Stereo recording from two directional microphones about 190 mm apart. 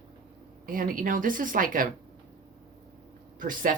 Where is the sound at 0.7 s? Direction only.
45° right (ahead or behind).